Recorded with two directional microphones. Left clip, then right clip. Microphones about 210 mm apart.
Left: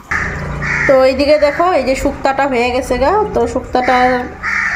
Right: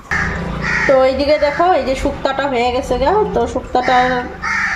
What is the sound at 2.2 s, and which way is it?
Speech, 10° left (ahead or behind).